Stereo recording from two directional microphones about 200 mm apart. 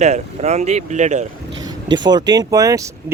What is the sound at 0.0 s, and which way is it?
Speech, 35° right (ahead or behind).